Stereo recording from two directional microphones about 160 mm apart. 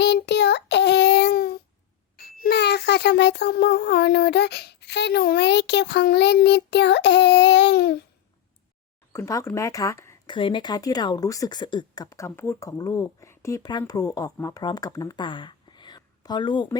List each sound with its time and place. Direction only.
0.0 s child singing: 90° left
2.1 s a child's voice: 80° left
9.1 s speech: 20° left (ahead or behind)
10.2 s speech: 30° left (ahead or behind)